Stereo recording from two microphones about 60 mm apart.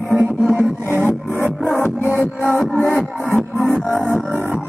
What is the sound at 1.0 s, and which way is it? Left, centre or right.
Music, left.